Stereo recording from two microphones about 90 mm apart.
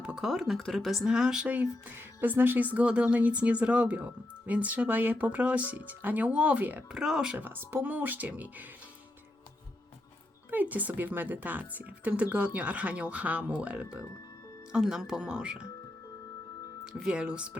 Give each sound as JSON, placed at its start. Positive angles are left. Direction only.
{"t": 0.0, "sound": "speech", "side_deg": -10}
{"t": 6.9, "sound": "speech", "side_deg": -5}
{"t": 7.3, "sound": "a woman's voice", "side_deg": -20}
{"t": 10.5, "sound": "a woman's voice", "side_deg": -20}
{"t": 16.8, "sound": "speech", "side_deg": -5}